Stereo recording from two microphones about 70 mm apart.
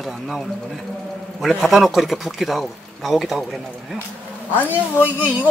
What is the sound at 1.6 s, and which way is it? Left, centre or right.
Speech, centre.